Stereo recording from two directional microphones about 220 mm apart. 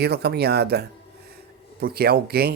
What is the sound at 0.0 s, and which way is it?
Speech, 50° right (ahead or behind).